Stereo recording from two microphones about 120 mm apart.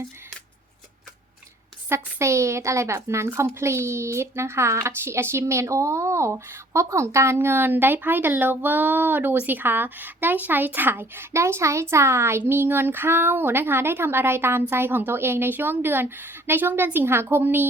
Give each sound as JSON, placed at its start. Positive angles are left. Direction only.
{"t": 1.9, "sound": "a child's voice", "side_deg": -25}